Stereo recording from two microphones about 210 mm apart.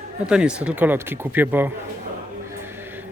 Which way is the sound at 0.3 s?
5° right (ahead or behind).